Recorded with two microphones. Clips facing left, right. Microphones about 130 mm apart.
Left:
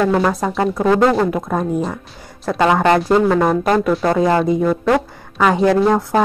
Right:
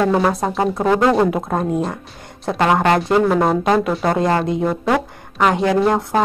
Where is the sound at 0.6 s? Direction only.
20° right (ahead or behind).